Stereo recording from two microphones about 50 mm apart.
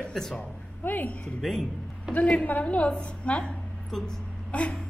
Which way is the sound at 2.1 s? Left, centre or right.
Left.